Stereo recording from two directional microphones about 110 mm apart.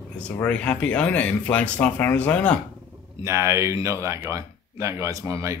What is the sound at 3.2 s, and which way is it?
Speech, 25° right (ahead or behind).